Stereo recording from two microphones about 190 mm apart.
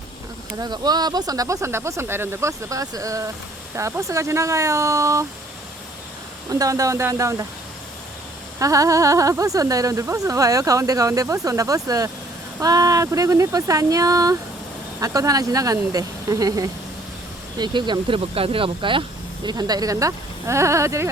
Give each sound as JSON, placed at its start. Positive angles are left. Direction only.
{"t": 0.6, "sound": "speech", "side_deg": -20}
{"t": 6.5, "sound": "speech", "side_deg": -15}
{"t": 8.5, "sound": "speech", "side_deg": -15}